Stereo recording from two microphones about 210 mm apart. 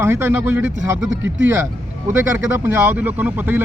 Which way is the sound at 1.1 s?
60° right (ahead or behind).